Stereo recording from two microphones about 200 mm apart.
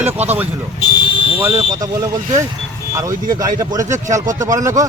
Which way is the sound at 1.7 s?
15° right (ahead or behind).